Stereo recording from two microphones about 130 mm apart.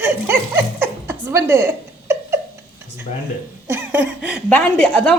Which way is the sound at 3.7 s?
15° right (ahead or behind).